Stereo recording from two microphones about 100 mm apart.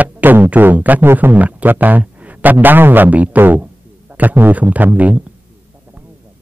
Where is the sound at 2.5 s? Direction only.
20° right (ahead or behind).